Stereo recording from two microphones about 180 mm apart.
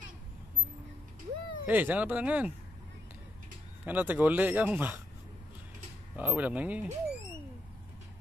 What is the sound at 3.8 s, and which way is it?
Speech, 10° right (ahead or behind).